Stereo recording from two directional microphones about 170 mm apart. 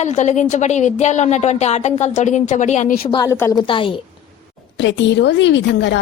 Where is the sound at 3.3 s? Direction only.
15° left (ahead or behind).